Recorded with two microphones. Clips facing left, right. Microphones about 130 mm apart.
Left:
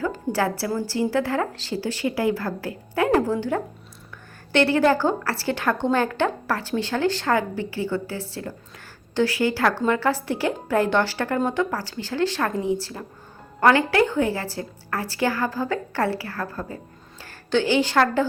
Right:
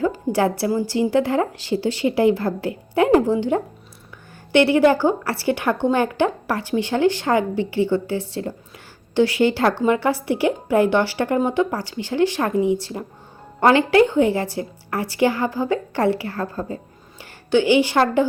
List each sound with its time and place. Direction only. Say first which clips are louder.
0.1 s a woman's voice: right 4 dB; 15° right (ahead or behind)